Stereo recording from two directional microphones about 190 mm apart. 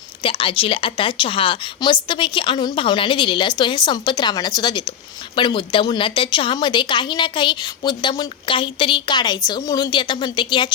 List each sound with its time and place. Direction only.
0.2 s a woman's voice: 25° left (ahead or behind)